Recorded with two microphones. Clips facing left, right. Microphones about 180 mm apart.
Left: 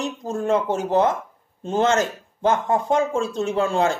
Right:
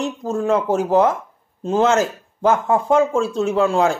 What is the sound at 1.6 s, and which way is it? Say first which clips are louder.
Speech: right 3 dB; 5° right (ahead or behind).